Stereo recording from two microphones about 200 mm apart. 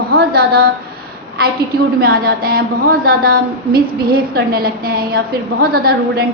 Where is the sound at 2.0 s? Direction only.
50° right (ahead or behind).